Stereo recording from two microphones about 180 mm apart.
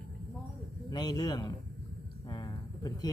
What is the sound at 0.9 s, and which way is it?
Speech, 20° left (ahead or behind).